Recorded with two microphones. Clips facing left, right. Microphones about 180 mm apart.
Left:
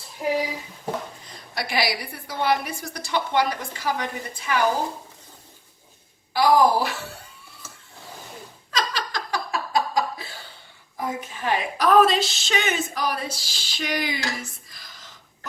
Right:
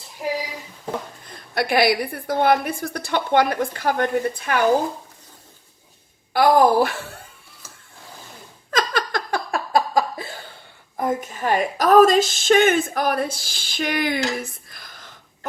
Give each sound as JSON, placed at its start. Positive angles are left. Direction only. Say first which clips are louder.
{"t": 1.2, "sound": "a woman's voice", "louder": "right 7 dB", "side_deg": -55}
{"t": 6.3, "sound": "a woman's voice", "louder": "right 3 dB", "side_deg": -55}
{"t": 8.7, "sound": "a sound", "louder": "right 5 dB", "side_deg": -55}
{"t": 10.9, "sound": "speech", "louder": "right 6 dB", "side_deg": -50}